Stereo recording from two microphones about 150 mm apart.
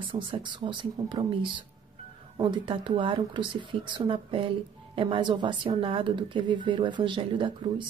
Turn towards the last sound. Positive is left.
turn(degrees=-35)  # may be behind; listen again after turning